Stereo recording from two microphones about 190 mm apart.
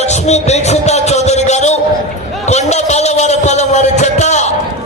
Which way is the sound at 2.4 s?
35° left (ahead or behind).